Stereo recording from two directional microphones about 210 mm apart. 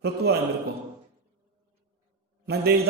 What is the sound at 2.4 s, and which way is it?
Speech, 50° right (ahead or behind).